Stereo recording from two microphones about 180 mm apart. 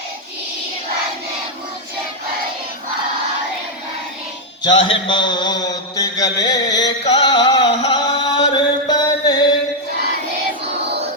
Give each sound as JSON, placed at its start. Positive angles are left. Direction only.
{"t": 4.6, "sound": "mantra", "side_deg": 25}
{"t": 7.1, "sound": "music", "side_deg": 25}